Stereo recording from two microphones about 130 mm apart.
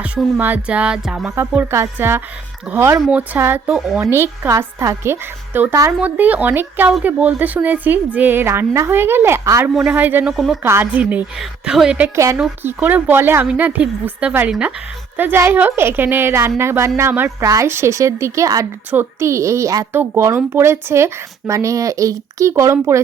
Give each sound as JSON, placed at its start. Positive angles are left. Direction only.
{"t": 0.0, "sound": "a woman's voice", "side_deg": -10}
{"t": 1.4, "sound": "a woman's voice", "side_deg": -20}
{"t": 3.7, "sound": "speech", "side_deg": -5}
{"t": 4.0, "sound": "a woman's voice", "side_deg": -20}
{"t": 9.6, "sound": "a woman's voice", "side_deg": -15}
{"t": 10.3, "sound": "speech", "side_deg": 0}
{"t": 10.6, "sound": "a woman's voice", "side_deg": -15}
{"t": 12.1, "sound": "a woman's voice", "side_deg": -20}